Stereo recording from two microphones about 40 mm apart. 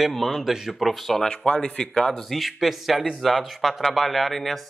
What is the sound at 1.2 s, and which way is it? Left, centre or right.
Speech, left.